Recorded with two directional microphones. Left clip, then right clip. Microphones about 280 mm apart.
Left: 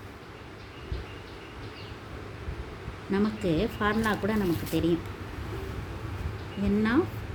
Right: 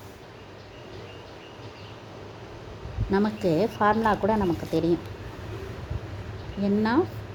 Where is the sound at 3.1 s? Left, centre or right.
Centre.